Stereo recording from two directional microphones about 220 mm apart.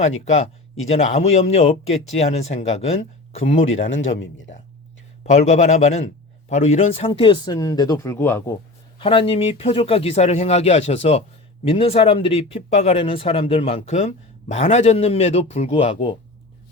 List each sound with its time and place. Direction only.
0.9 s speech: 30° left (ahead or behind)
4.0 s speech: 60° left (ahead or behind)
5.2 s speech: 30° left (ahead or behind); by 8.5 s 10° left (ahead or behind)
9.0 s speech: 25° left (ahead or behind)